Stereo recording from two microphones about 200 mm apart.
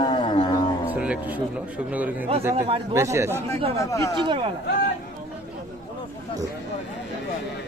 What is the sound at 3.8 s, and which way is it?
Speech, 15° left (ahead or behind).